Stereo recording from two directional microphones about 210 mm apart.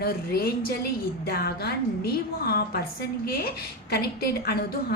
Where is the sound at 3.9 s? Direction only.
45° left (ahead or behind).